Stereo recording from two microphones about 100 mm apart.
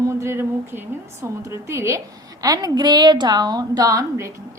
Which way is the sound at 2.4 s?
40° right (ahead or behind).